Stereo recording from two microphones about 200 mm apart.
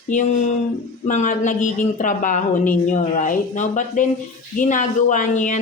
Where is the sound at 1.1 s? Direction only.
40° left (ahead or behind).